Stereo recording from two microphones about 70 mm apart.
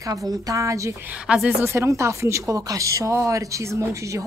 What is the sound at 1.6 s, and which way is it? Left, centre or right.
A woman's voice, right.